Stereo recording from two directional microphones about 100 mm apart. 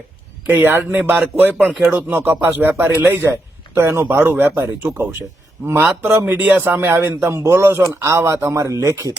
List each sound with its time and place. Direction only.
0.4 s speech: 20° right (ahead or behind)